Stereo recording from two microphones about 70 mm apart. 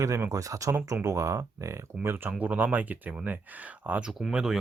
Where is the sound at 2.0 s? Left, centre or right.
Right.